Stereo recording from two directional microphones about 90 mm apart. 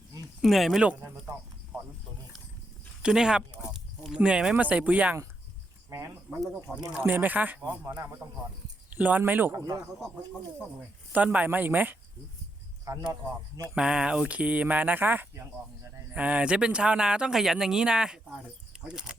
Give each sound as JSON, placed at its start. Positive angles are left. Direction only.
{"t": 0.4, "sound": "speech", "side_deg": 0}
{"t": 0.8, "sound": "speech", "side_deg": -15}
{"t": 3.0, "sound": "speech", "side_deg": -5}
{"t": 3.7, "sound": "a sound", "side_deg": 0}
{"t": 4.2, "sound": "speech", "side_deg": -10}
{"t": 6.4, "sound": "speech", "side_deg": -5}
{"t": 7.0, "sound": "speech", "side_deg": -20}
{"t": 7.9, "sound": "speech", "side_deg": -35}
{"t": 8.9, "sound": "speech", "side_deg": -20}
{"t": 9.6, "sound": "speech", "side_deg": -35}
{"t": 11.1, "sound": "speech", "side_deg": -15}
{"t": 12.8, "sound": "speech", "side_deg": -35}
{"t": 13.7, "sound": "speech", "side_deg": -10}
{"t": 16.1, "sound": "speech", "side_deg": -15}